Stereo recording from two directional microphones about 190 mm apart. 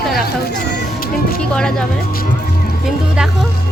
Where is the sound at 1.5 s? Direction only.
5° left (ahead or behind).